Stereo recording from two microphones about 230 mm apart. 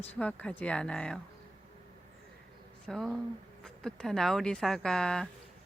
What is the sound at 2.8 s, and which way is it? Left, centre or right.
Speech, centre.